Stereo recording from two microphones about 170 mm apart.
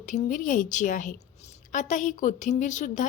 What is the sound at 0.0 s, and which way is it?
A woman's voice, 50° left (ahead or behind).